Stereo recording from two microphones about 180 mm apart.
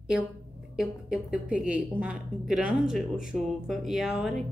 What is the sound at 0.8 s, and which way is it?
A woman's voice, 5° right (ahead or behind).